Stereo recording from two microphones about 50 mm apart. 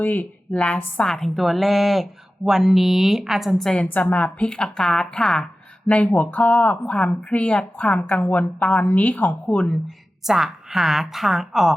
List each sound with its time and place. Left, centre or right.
0.0 s a woman's voice: left
0.5 s a woman's voice: centre
4.0 s a woman's voice: left; by 5.5 s centre
5.9 s a woman's voice: left
6.4 s a woman's voice: centre
6.8 s a woman's voice: left
8.2 s a woman's voice: left
8.5 s a woman's voice: centre
9.0 s a woman's voice: left
10.2 s a woman's voice: centre